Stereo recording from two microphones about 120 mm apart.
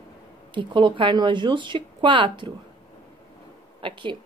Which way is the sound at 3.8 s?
45° right (ahead or behind).